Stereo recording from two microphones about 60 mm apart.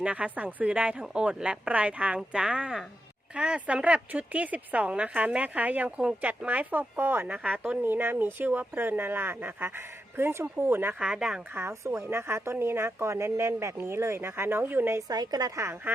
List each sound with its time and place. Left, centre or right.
0.0 s speech: right
11.1 s speech: centre
11.5 s speech: right
15.0 s a woman's voice: right
15.5 s speech: right